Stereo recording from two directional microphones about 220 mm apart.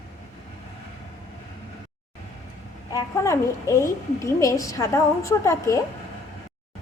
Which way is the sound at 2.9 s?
15° left (ahead or behind).